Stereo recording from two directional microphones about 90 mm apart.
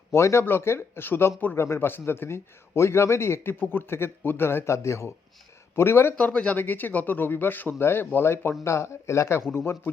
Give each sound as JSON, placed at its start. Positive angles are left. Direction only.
{"t": 0.1, "sound": "a man's voice", "side_deg": 30}
{"t": 6.1, "sound": "a man's voice", "side_deg": 15}